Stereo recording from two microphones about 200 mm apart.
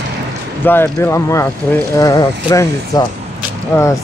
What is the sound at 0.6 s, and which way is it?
Speech, 10° left (ahead or behind).